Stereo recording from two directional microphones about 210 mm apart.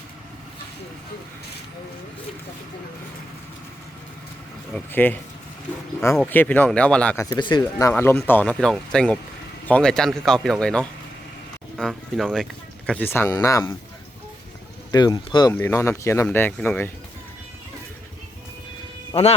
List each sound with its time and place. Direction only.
4.7 s speech: 10° left (ahead or behind)
7.3 s speech: 20° left (ahead or behind)
14.9 s speech: 20° left (ahead or behind)